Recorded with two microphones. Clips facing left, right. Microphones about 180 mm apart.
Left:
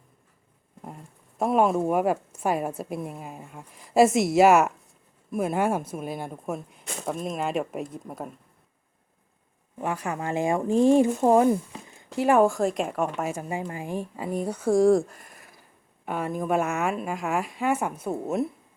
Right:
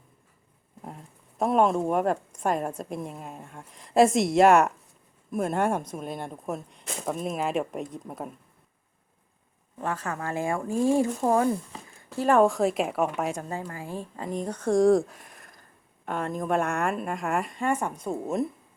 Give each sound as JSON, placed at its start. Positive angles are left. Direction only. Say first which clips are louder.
{"t": 0.8, "sound": "speech", "louder": "even", "side_deg": 0}
{"t": 9.7, "sound": "speech", "louder": "left 2 dB", "side_deg": 15}